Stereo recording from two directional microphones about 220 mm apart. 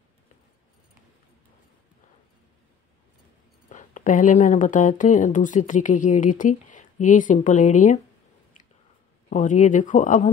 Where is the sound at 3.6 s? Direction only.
35° left (ahead or behind).